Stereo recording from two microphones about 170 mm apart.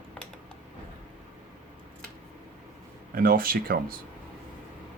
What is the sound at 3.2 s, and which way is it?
Speech, 60° right (ahead or behind).